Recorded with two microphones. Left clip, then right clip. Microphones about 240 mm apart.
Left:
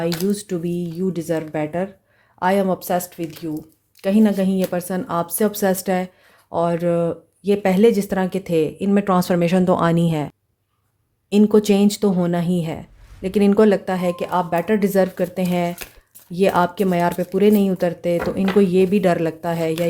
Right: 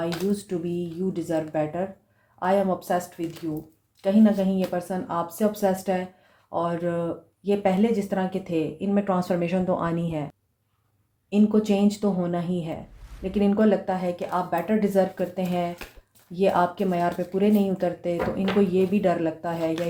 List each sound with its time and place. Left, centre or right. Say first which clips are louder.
0.3 s speech: left 4 dB; left
4.0 s speech: left 3 dB; left
11.3 s speech: left 7 dB; left